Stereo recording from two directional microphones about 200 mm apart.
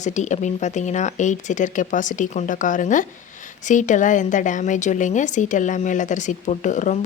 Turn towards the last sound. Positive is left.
turn(degrees=35)  # may be behind; listen again after turning